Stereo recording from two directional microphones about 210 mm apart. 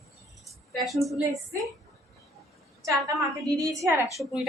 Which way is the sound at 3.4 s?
15° right (ahead or behind).